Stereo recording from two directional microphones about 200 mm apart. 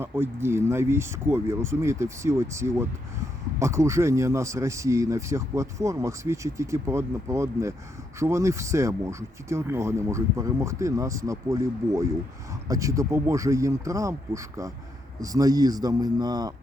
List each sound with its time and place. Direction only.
0.0 s a man's voice: 10° right (ahead or behind)